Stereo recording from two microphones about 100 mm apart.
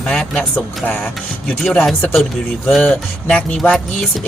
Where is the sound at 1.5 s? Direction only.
5° left (ahead or behind).